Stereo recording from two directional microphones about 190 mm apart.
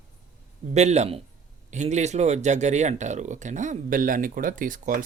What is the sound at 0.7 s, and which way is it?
A man's voice, 35° right (ahead or behind).